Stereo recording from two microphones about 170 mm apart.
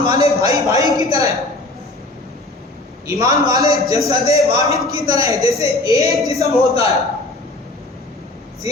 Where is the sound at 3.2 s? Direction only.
20° right (ahead or behind).